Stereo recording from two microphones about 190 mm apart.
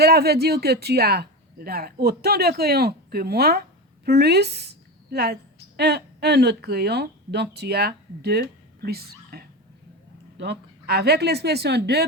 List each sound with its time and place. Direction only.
0.0 s a woman's voice: 55° right (ahead or behind)